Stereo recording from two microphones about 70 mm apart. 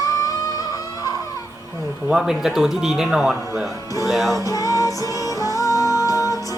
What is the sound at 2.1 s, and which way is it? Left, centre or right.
Speech, centre.